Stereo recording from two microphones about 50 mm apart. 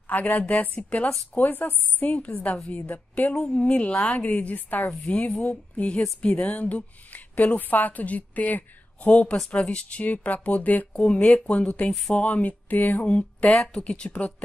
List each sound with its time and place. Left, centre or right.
0.1 s a woman's voice: left